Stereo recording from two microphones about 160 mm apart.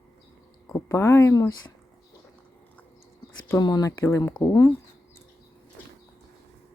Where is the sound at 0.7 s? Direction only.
20° left (ahead or behind).